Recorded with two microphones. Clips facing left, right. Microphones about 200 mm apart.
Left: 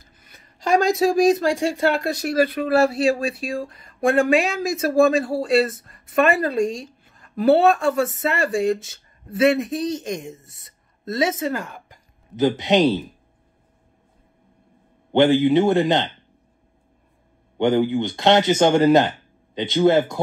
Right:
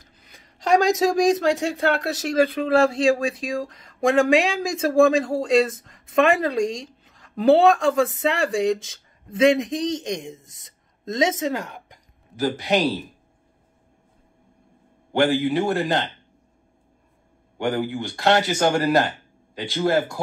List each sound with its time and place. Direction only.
0.0 s a sound: 90° right
0.8 s speech: 90° right
1.2 s speech: 10° left (ahead or behind)
3.2 s speech: 90° right
4.9 s speech: 5° left (ahead or behind)
5.7 s speech: 90° right
9.8 s speech: 5° left (ahead or behind)
12.4 s speech: 20° left (ahead or behind)
15.1 s speech: 20° left (ahead or behind)
17.6 s speech: 20° left (ahead or behind)